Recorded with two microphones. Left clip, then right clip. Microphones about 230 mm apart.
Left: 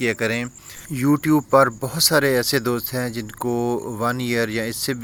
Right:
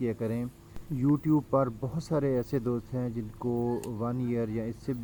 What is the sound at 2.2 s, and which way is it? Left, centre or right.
Speech, centre.